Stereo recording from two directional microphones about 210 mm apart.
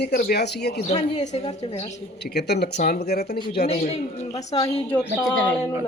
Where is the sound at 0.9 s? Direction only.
30° left (ahead or behind).